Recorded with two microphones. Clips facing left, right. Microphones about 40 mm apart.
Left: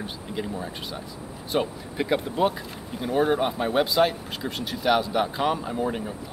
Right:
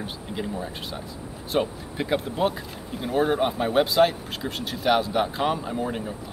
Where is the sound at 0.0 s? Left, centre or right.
Centre.